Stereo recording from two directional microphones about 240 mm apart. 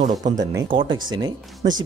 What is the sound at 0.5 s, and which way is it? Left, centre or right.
Speech, right.